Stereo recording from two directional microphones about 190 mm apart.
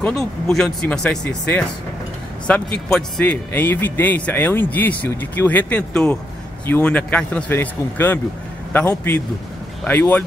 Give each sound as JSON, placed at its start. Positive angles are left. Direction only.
{"t": 0.0, "sound": "a man's voice", "side_deg": 5}